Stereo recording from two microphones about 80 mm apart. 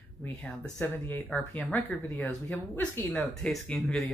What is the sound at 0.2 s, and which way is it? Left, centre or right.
Speech, centre.